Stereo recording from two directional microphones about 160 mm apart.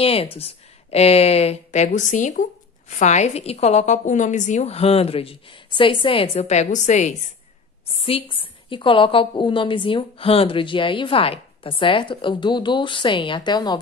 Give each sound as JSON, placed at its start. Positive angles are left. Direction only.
{"t": 0.0, "sound": "a woman's voice", "side_deg": 35}
{"t": 8.0, "sound": "a woman's voice", "side_deg": 35}